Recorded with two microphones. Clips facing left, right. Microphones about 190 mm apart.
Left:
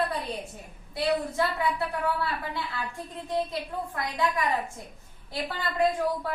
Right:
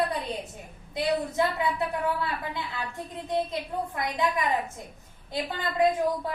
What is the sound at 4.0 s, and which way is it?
A woman's voice, 20° right (ahead or behind).